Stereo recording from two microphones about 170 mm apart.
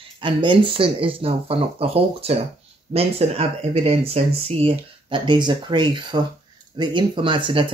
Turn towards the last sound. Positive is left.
turn(degrees=-30)  # may be behind; listen again after turning